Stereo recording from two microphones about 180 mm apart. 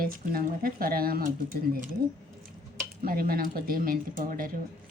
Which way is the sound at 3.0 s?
55° right (ahead or behind).